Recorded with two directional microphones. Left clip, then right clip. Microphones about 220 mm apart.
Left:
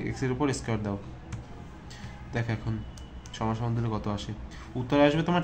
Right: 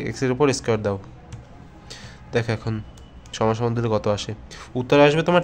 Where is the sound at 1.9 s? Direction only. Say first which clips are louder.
Right 12 dB; 40° right (ahead or behind).